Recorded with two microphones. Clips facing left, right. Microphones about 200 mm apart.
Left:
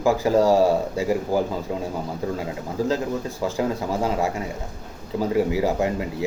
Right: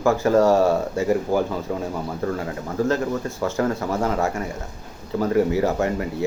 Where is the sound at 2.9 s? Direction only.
10° left (ahead or behind).